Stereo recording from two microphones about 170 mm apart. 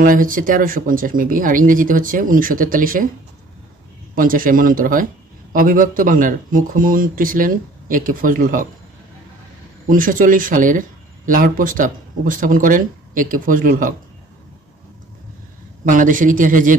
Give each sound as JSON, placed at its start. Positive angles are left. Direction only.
{"t": 0.0, "sound": "speech", "side_deg": -55}
{"t": 4.1, "sound": "speech", "side_deg": -55}
{"t": 9.8, "sound": "speech", "side_deg": -55}
{"t": 15.8, "sound": "speech", "side_deg": -50}